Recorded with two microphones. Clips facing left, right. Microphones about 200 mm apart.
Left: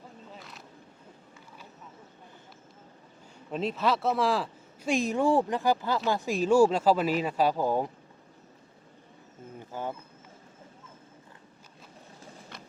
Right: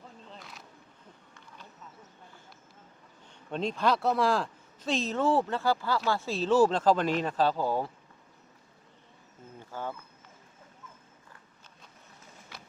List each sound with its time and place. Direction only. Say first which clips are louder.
0.3 s vehicle: left 1 dB; centre (ahead or behind)
3.5 s speech: even; 5° left (ahead or behind)
9.7 s speech: left 2 dB; 15° left (ahead or behind)
12.5 s clip-clop: right 1 dB; 5° right (ahead or behind)